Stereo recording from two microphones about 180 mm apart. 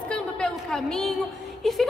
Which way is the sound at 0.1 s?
5° left (ahead or behind).